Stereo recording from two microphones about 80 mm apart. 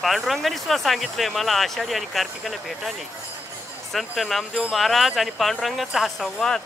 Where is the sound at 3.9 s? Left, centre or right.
Centre.